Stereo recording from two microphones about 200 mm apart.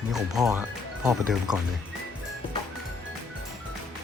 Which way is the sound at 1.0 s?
5° right (ahead or behind).